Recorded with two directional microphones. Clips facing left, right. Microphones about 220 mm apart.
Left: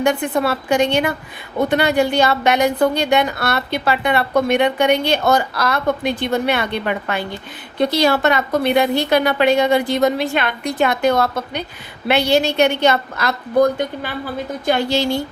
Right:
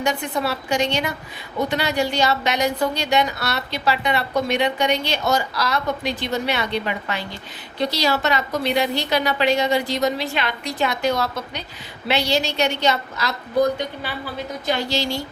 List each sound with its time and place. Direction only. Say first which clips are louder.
0.0 s a woman's voice: left 6 dB; 55° left (ahead or behind)